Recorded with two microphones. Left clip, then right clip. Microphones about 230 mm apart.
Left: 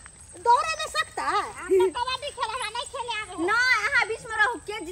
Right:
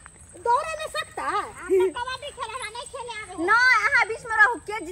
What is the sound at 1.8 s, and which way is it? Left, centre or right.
Speech, left.